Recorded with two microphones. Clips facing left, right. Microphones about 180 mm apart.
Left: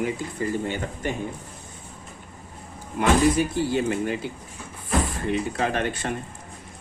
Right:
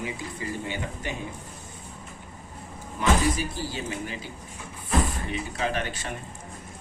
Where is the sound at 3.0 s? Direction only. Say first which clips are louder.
Left 5 dB; 60° left (ahead or behind).